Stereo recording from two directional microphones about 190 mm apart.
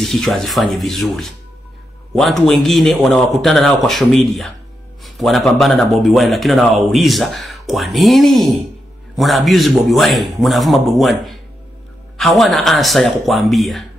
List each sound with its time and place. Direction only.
0.0 s speech: centre (ahead or behind)